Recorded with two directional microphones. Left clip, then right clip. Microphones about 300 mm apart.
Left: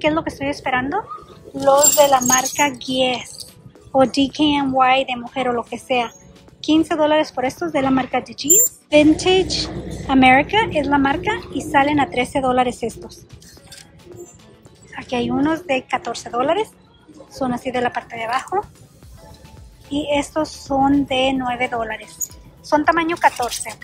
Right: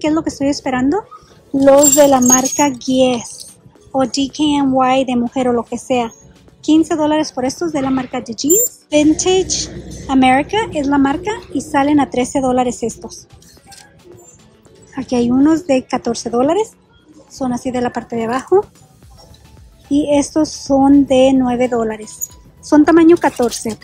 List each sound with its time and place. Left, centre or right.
0.0 s a woman's voice: centre
15.0 s a woman's voice: centre
19.9 s a woman's voice: centre